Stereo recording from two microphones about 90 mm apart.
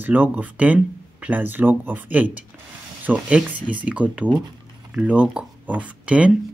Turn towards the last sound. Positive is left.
turn(degrees=-15)  # may be behind; listen again after turning